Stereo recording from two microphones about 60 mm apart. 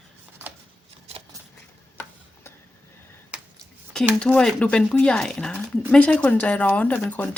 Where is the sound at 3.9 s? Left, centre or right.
Centre; by 7.4 s left.